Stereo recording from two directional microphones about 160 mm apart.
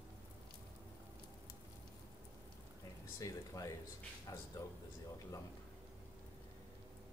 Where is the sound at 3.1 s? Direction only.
20° left (ahead or behind).